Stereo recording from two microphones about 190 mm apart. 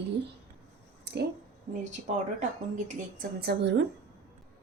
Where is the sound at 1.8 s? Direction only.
40° right (ahead or behind).